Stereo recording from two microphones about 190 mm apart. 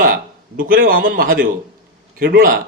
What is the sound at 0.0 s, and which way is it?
A man's voice, 45° right (ahead or behind).